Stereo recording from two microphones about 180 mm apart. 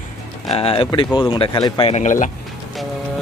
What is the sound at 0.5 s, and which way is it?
Speech, 30° left (ahead or behind).